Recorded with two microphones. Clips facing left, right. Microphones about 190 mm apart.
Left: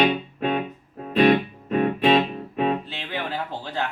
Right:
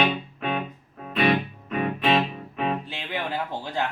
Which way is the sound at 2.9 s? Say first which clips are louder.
Even; 15° right (ahead or behind).